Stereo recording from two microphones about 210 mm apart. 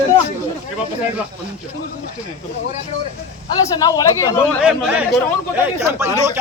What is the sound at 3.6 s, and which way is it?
Speech, 15° left (ahead or behind).